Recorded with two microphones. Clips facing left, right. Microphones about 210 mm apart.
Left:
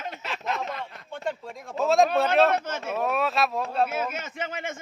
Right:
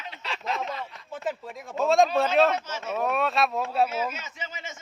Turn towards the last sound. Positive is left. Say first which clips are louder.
# left 7 dB
turn(degrees=55)  # may be behind; listen again after turning